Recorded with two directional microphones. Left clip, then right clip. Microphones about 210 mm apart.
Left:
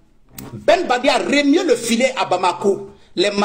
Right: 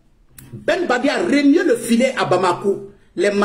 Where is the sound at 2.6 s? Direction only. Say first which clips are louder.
Left 2 dB; 5° left (ahead or behind).